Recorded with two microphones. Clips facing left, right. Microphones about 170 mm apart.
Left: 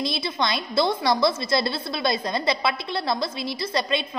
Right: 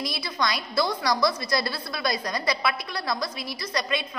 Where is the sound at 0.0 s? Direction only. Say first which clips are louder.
Left 3 dB; 25° left (ahead or behind).